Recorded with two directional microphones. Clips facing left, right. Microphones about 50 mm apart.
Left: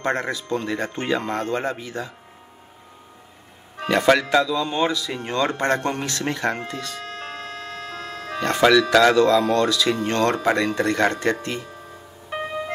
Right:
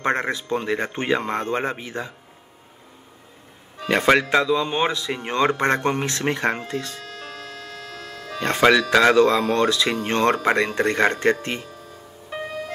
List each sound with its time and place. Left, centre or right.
0.0 s speech: right
3.9 s speech: right
7.0 s music: left
8.4 s speech: right
12.3 s music: left